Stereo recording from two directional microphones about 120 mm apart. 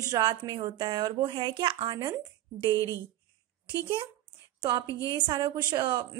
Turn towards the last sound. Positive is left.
turn(degrees=-40)  # may be behind; listen again after turning